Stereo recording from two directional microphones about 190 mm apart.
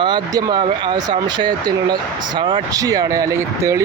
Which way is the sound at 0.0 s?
20° right (ahead or behind).